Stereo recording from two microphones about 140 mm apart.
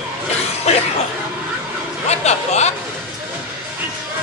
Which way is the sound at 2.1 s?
50° left (ahead or behind).